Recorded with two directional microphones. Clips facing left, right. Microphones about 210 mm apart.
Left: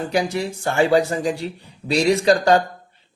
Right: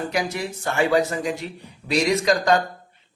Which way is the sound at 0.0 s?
30° left (ahead or behind).